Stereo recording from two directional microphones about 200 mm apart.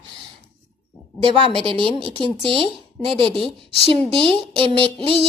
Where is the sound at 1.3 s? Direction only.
25° right (ahead or behind).